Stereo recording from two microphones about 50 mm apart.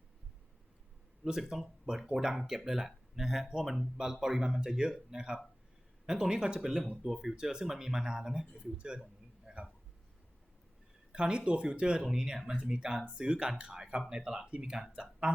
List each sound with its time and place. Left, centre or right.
1.2 s speech: centre
11.1 s speech: centre